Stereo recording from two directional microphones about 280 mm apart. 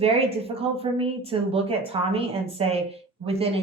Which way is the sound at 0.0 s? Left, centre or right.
Right.